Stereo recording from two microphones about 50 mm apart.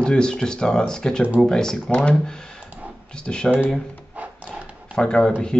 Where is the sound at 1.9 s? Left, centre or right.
Left.